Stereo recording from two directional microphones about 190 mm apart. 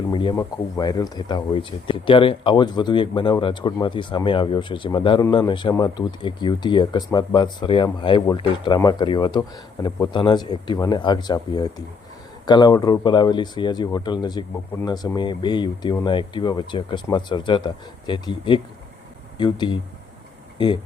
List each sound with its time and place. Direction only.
0.1 s speech: 25° left (ahead or behind)